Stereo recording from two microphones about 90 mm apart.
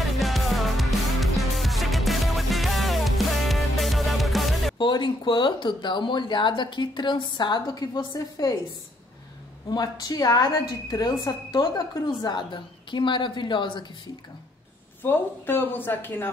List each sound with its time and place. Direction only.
0.2 s music: centre (ahead or behind)
4.7 s speech: 60° left (ahead or behind)
9.7 s a woman's voice: 45° left (ahead or behind)
15.0 s speech: 20° left (ahead or behind)